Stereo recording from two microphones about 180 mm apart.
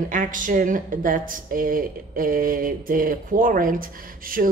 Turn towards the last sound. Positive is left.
turn(degrees=-50)  # may be behind; listen again after turning